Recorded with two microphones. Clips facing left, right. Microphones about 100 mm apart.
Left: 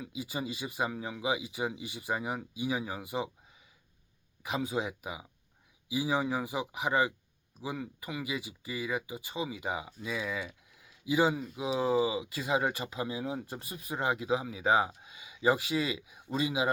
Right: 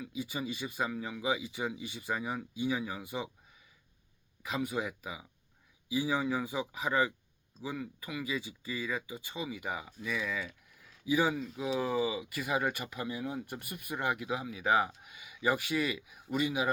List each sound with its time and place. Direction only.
0.2 s speech: 25° left (ahead or behind)
4.4 s speech: 20° left (ahead or behind)